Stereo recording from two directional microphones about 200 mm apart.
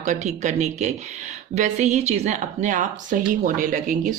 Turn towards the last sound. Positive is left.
turn(degrees=-40)  # may be behind; listen again after turning